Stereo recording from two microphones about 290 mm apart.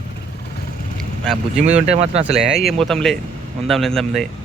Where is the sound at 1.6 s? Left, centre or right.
Right.